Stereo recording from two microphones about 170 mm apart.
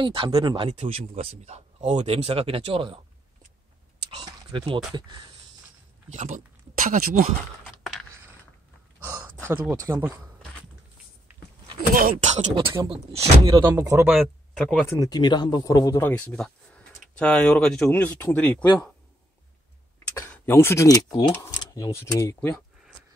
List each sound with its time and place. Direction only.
0.0 s speech: 30° right (ahead or behind)
0.7 s speech: 35° right (ahead or behind)
4.2 s speech: 25° right (ahead or behind)
6.1 s speech: 45° right (ahead or behind)
9.0 s speech: 15° right (ahead or behind)
11.9 s speech: 55° right (ahead or behind)
12.8 s speech: 35° right (ahead or behind)
13.4 s speech: 25° right (ahead or behind)
14.2 s speech: 5° left (ahead or behind)
14.9 s speech: 20° left (ahead or behind)
20.2 s speech: 15° left (ahead or behind)